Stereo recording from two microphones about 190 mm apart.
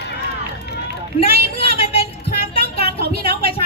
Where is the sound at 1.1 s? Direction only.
30° left (ahead or behind).